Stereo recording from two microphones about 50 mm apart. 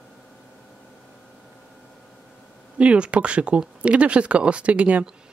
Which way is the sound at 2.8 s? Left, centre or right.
Right.